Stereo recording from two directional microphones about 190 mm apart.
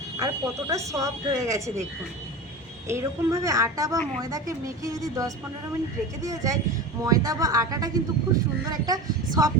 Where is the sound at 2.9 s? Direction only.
15° right (ahead or behind).